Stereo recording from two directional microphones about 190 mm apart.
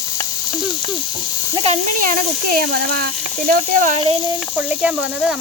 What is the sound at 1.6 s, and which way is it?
Speech, 40° right (ahead or behind).